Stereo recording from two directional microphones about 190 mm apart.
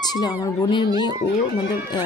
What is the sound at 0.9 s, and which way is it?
Speech, 20° right (ahead or behind).